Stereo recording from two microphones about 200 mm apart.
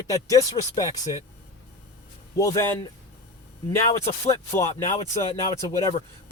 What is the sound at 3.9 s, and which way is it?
A man's voice, 15° left (ahead or behind).